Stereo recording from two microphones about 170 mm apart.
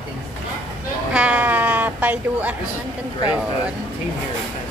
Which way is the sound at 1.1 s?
10° right (ahead or behind).